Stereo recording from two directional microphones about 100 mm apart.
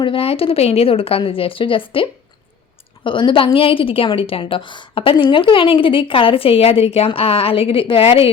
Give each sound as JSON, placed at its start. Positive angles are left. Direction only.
{"t": 0.0, "sound": "a woman's voice", "side_deg": 65}